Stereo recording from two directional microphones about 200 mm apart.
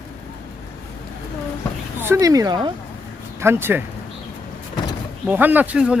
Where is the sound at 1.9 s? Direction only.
10° right (ahead or behind).